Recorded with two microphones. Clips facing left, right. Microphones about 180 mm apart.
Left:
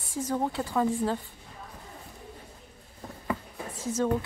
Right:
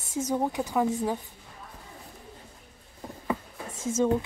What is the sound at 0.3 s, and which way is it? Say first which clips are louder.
Speech: right 1 dB; 15° right (ahead or behind).